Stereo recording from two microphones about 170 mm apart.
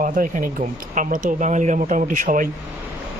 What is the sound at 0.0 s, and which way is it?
Speech, 50° right (ahead or behind).